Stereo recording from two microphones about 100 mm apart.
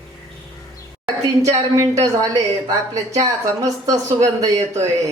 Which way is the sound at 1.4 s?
30° right (ahead or behind).